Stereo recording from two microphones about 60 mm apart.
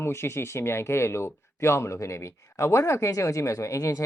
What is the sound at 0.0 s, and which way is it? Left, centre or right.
Speech, left.